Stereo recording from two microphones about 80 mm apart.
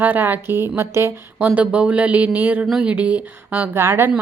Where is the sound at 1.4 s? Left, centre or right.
Centre.